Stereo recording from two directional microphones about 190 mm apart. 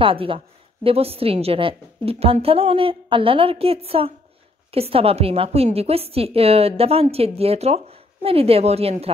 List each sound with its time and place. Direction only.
0.0 s a woman's voice: 30° right (ahead or behind)